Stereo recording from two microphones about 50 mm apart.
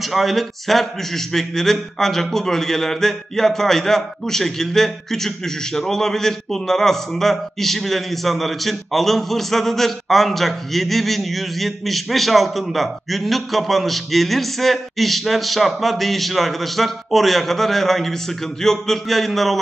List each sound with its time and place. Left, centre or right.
0.0 s a man's voice: centre